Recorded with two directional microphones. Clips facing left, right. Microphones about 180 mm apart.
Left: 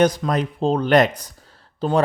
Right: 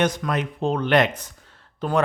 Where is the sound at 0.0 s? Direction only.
35° left (ahead or behind).